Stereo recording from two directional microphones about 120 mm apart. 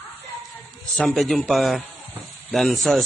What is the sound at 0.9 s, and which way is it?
A man's voice, 5° left (ahead or behind).